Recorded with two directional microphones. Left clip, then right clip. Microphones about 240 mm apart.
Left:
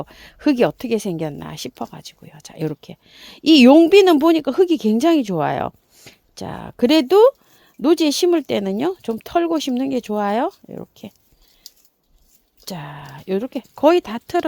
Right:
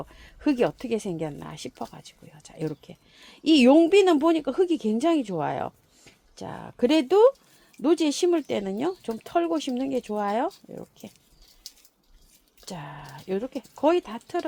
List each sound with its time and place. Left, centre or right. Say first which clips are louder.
0.0 s speech: left 7 dB; left
12.6 s speech: left 6 dB; left